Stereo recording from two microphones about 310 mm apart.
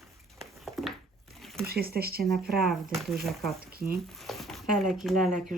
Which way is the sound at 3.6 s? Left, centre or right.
Right.